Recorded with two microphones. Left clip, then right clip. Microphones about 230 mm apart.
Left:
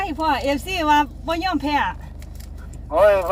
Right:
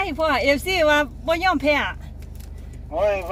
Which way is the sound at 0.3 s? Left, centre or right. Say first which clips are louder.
Right 2 dB; right.